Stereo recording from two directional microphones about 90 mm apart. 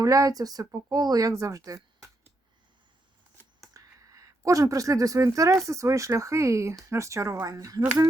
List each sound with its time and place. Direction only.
0.0 s speech: 40° right (ahead or behind)
3.8 s speech: 40° right (ahead or behind)